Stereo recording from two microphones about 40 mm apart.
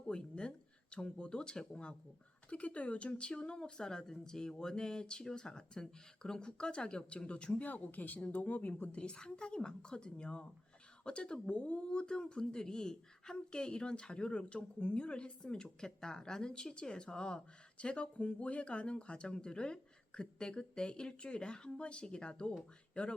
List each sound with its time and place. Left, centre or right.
0.1 s speech: left
2.5 s speech: left
7.6 s speech: left
9.0 s speech: left